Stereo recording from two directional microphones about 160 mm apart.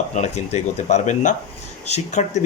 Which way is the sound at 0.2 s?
45° left (ahead or behind).